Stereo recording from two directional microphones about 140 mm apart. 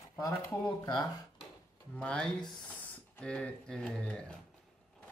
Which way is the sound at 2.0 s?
5° left (ahead or behind).